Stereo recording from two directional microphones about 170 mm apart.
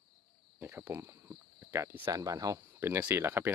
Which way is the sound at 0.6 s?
15° right (ahead or behind).